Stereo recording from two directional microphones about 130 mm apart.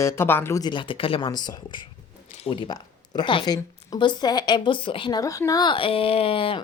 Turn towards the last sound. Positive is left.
turn(degrees=45)  # may be behind; listen again after turning